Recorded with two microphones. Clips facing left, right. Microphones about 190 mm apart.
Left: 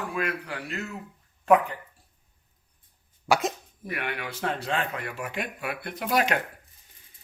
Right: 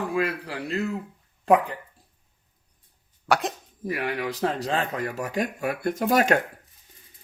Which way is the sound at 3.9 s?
35° right (ahead or behind).